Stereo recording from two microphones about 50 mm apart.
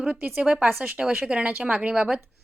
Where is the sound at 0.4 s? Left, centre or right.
Right.